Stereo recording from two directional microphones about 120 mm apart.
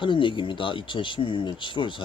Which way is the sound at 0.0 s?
45° left (ahead or behind).